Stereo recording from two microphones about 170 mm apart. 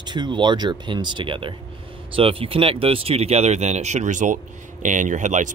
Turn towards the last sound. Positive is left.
turn(degrees=-45)  # may be behind; listen again after turning